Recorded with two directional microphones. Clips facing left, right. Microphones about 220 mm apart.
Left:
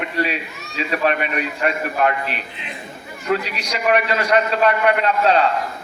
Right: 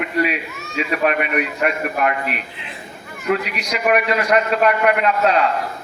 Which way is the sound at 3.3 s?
30° left (ahead or behind).